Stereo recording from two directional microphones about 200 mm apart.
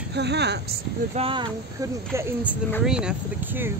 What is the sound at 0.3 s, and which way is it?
Speech, 55° right (ahead or behind).